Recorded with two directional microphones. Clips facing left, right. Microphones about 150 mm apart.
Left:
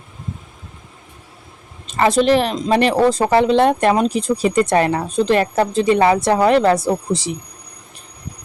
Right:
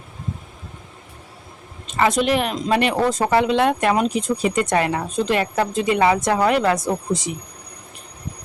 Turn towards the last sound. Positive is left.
turn(degrees=35)  # may be behind; listen again after turning